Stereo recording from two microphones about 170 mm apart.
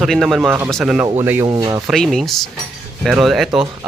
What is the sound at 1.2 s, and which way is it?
Speech, 15° right (ahead or behind).